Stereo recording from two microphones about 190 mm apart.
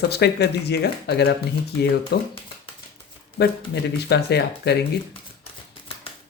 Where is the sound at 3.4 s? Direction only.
60° left (ahead or behind).